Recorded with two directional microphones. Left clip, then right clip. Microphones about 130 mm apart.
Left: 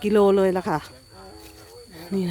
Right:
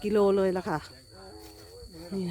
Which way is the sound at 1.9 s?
30° left (ahead or behind).